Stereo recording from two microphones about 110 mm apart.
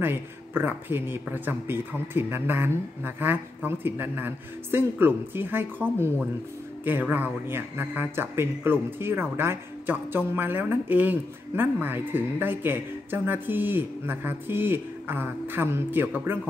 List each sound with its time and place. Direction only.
0.0 s speech: 20° right (ahead or behind)